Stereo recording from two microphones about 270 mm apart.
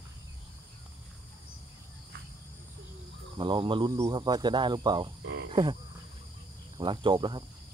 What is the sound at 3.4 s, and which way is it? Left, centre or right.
Speech, centre.